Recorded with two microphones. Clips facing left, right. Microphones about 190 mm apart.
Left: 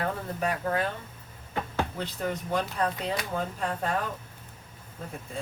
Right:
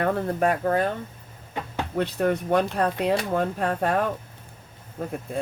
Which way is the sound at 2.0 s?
60° right (ahead or behind).